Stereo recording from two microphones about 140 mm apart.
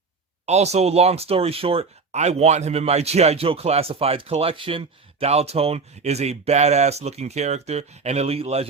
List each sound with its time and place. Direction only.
0.4 s speech: 50° right (ahead or behind)